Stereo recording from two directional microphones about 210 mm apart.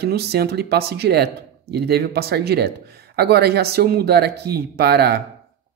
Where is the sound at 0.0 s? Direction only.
50° right (ahead or behind).